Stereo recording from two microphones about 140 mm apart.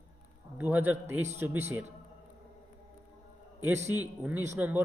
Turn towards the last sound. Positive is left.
turn(degrees=-15)  # may be behind; listen again after turning